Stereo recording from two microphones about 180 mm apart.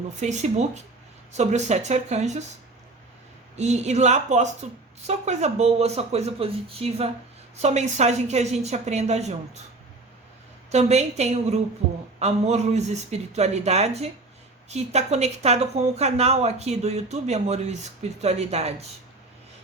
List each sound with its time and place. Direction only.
0.2 s speech: 40° right (ahead or behind)
3.6 s speech: 40° right (ahead or behind)
10.7 s speech: 40° right (ahead or behind)